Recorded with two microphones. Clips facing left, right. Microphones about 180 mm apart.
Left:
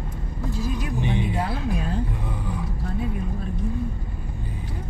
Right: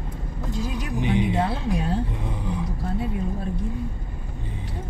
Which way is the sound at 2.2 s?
20° right (ahead or behind).